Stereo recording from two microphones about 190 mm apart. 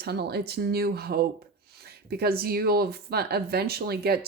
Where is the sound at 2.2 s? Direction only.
55° right (ahead or behind).